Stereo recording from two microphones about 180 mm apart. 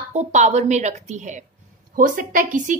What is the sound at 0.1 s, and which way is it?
A woman's voice, 40° right (ahead or behind).